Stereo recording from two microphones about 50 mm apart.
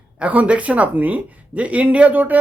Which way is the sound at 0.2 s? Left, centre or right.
Right.